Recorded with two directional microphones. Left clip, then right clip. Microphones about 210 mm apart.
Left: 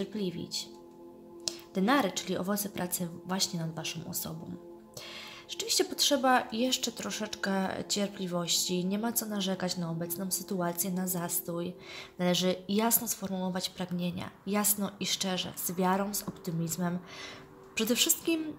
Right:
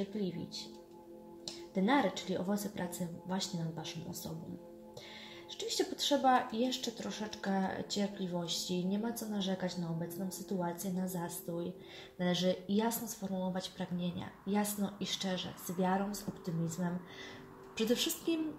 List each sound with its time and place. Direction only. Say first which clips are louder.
1.4 s speech: left 4 dB; 20° left (ahead or behind)
5.5 s speech: left 6 dB; 25° left (ahead or behind)